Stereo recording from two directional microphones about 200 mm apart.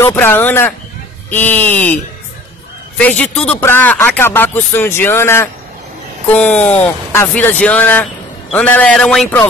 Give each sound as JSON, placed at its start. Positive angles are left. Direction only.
{"t": 0.0, "sound": "a man's voice", "side_deg": 10}
{"t": 3.0, "sound": "a man's voice", "side_deg": 5}